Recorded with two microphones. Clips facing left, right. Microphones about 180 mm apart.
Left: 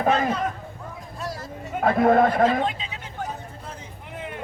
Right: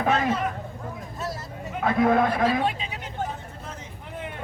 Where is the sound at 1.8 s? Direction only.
50° left (ahead or behind).